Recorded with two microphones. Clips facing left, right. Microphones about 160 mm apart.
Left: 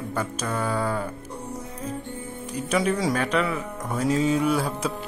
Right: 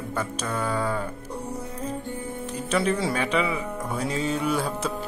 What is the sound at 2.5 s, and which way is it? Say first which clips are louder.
Speech: left 1 dB; 5° left (ahead or behind).